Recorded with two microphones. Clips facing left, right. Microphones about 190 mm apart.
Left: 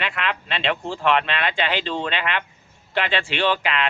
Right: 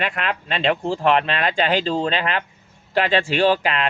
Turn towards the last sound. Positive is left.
turn(degrees=-40)  # may be behind; listen again after turning